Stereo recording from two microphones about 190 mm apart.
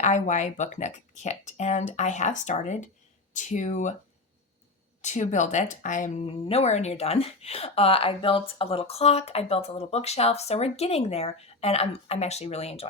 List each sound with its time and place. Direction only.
0.0 s speech: 40° left (ahead or behind)
5.0 s speech: 40° left (ahead or behind)